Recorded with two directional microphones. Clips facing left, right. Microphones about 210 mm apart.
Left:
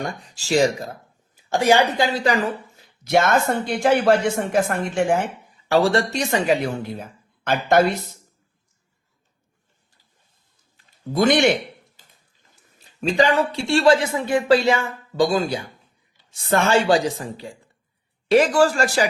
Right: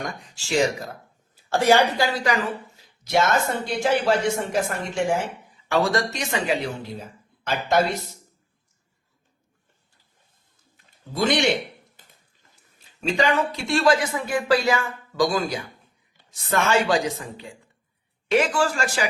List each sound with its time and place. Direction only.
0.0 s a woman's voice: 35° left (ahead or behind)
1.5 s speech: 15° left (ahead or behind)
3.0 s speech: 55° left (ahead or behind)
5.6 s a woman's voice: 30° left (ahead or behind)
7.4 s speech: 55° left (ahead or behind)
11.1 s a man's voice: 50° left (ahead or behind)
13.0 s a woman's voice: 35° left (ahead or behind)